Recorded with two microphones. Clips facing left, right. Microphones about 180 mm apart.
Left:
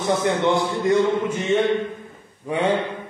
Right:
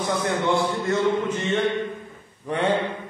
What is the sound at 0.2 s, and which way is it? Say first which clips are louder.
Speech: left 3 dB; 20° left (ahead or behind).